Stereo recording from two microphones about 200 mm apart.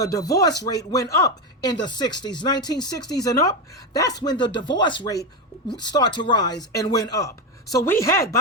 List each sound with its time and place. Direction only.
0.0 s speech: 20° left (ahead or behind)